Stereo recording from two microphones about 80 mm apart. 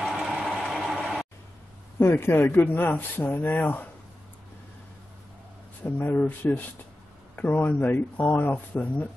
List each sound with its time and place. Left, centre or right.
0.1 s vehicle: centre
0.6 s a sound: centre
2.0 s speech: left
5.9 s speech: left